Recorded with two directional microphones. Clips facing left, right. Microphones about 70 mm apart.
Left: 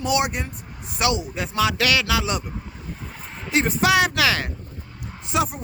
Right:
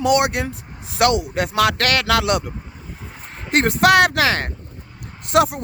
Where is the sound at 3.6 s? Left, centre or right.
Right.